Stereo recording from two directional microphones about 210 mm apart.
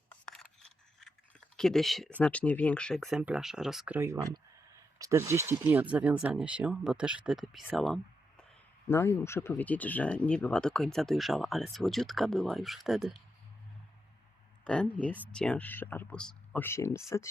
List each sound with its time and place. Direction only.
0.1 s scissors: 5° left (ahead or behind)
1.5 s speech: centre (ahead or behind)
8.9 s speech: 10° left (ahead or behind)
14.6 s a sound: 5° left (ahead or behind)
15.4 s speech: 5° left (ahead or behind)